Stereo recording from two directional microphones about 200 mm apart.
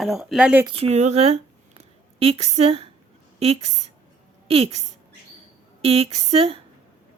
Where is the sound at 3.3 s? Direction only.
30° right (ahead or behind).